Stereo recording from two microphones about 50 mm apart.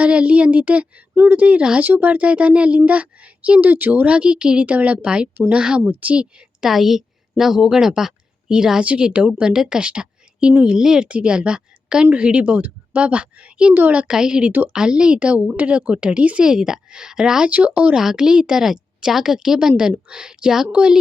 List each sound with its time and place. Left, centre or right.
0.0 s a woman's voice: right
5.8 s a woman's voice: right
6.7 s a woman's voice: centre
8.8 s a woman's voice: right
16.5 s a woman's voice: centre
17.5 s a woman's voice: right
17.9 s a woman's voice: centre